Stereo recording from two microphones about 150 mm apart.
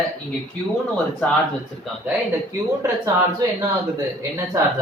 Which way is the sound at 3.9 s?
20° right (ahead or behind).